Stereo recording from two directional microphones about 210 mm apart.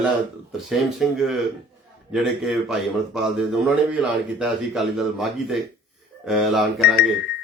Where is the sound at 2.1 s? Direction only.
Centre (ahead or behind).